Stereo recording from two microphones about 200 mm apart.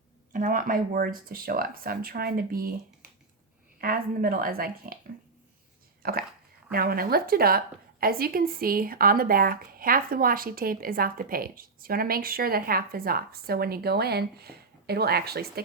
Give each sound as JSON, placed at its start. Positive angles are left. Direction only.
{"t": 0.3, "sound": "a woman's voice", "side_deg": -40}
{"t": 3.8, "sound": "a woman's voice", "side_deg": -45}
{"t": 6.0, "sound": "a sound", "side_deg": -50}
{"t": 6.7, "sound": "a woman's voice", "side_deg": -50}